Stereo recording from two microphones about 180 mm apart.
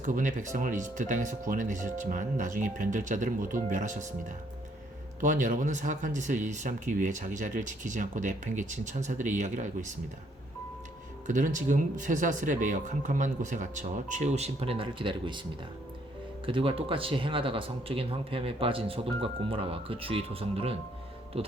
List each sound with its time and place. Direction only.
0.0 s speech: 45° right (ahead or behind)
5.2 s speech: 45° right (ahead or behind)
11.3 s speech: 45° right (ahead or behind); by 15.4 s 25° right (ahead or behind)
16.5 s speech: 30° right (ahead or behind)